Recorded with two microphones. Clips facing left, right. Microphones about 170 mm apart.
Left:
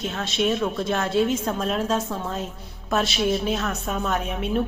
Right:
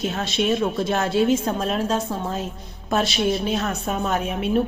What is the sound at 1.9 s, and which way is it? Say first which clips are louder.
Speech: right 1 dB; 30° right (ahead or behind).